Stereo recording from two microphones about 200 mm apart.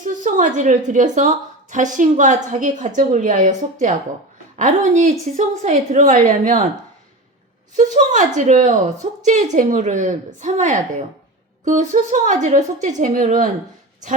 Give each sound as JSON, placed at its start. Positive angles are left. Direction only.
{"t": 0.0, "sound": "a woman's voice", "side_deg": -40}
{"t": 7.8, "sound": "a woman's voice", "side_deg": -35}